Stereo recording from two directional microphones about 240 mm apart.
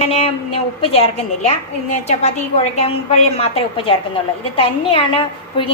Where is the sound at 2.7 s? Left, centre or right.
Left.